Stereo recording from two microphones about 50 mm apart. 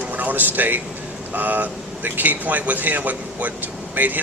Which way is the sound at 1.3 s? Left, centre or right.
Right.